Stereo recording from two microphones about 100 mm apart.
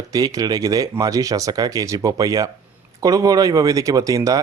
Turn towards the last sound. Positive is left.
turn(degrees=-35)  # may be behind; listen again after turning